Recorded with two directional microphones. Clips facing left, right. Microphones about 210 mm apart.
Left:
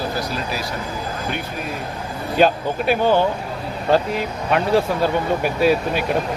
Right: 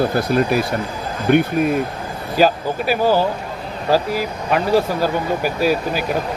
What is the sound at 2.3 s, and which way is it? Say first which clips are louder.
Speech: right 1 dB; 5° right (ahead or behind).